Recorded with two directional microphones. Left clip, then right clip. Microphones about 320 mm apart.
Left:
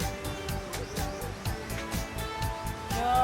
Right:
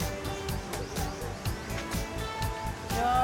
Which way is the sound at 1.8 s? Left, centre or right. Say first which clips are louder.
Even; centre.